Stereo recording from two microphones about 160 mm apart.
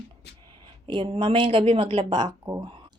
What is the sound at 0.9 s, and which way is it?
Speech, 35° right (ahead or behind).